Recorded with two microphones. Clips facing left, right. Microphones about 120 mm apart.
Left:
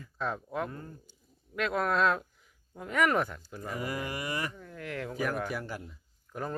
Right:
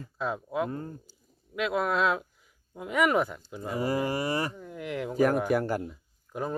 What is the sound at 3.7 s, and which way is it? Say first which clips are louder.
Speech: right 7 dB; 30° right (ahead or behind).